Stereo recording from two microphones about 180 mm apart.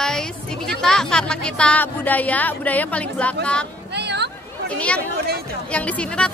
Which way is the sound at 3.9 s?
70° right (ahead or behind).